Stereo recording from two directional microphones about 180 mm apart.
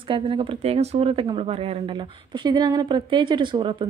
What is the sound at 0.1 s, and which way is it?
Speech, 30° right (ahead or behind).